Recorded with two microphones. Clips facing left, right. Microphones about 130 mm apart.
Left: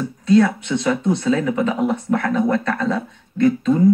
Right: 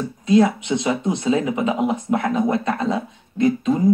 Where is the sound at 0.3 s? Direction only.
15° right (ahead or behind).